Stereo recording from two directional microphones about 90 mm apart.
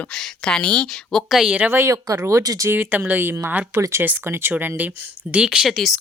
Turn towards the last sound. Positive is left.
turn(degrees=0)  # may be behind; listen again after turning